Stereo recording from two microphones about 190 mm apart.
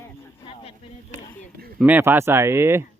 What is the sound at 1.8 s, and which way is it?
Speech, 10° right (ahead or behind).